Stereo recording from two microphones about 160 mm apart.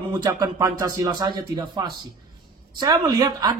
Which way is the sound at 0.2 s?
20° right (ahead or behind).